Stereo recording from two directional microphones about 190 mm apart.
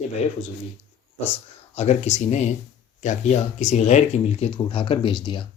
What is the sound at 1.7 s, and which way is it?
Speech, 35° left (ahead or behind).